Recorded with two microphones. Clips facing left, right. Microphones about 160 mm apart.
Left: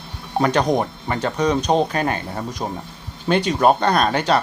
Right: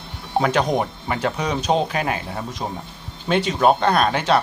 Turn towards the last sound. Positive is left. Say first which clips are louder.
# even
turn(degrees=0)  # may be behind; listen again after turning